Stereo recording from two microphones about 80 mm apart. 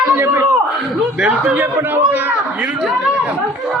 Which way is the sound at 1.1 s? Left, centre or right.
Centre.